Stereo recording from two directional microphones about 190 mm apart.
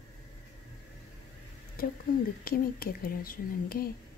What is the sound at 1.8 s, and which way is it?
Speech, 50° left (ahead or behind).